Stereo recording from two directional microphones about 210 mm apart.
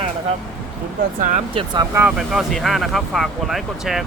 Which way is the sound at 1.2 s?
35° right (ahead or behind).